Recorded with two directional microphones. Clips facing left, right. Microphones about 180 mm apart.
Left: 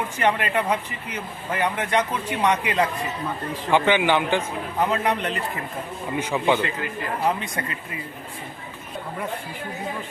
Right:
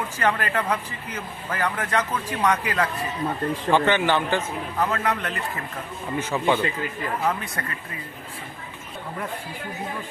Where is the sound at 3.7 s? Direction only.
15° left (ahead or behind).